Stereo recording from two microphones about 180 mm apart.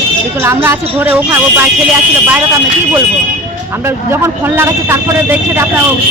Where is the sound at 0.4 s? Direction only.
15° right (ahead or behind).